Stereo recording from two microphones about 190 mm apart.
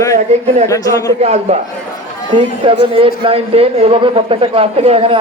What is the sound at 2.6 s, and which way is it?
A man's voice, 30° right (ahead or behind).